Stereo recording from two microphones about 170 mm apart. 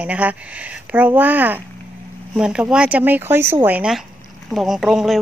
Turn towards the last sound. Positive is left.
turn(degrees=0)  # may be behind; listen again after turning